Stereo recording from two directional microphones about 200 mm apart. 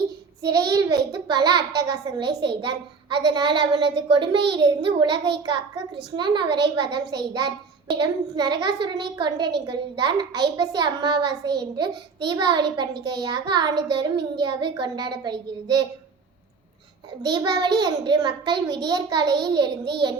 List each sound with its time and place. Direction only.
0.4 s a child's voice: 20° right (ahead or behind)
17.2 s a child's voice: 20° right (ahead or behind)